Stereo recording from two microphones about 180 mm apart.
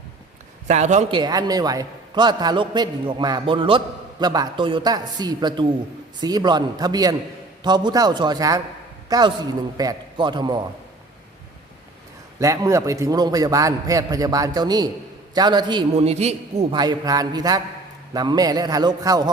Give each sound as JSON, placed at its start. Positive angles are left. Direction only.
{"t": 0.7, "sound": "a man's voice", "side_deg": -40}
{"t": 1.1, "sound": "a man's voice", "side_deg": -25}
{"t": 12.4, "sound": "a man's voice", "side_deg": -15}
{"t": 16.0, "sound": "a man's voice", "side_deg": -35}
{"t": 16.7, "sound": "a man's voice", "side_deg": -25}